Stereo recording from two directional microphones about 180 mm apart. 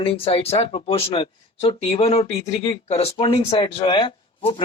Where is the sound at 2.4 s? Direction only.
20° left (ahead or behind).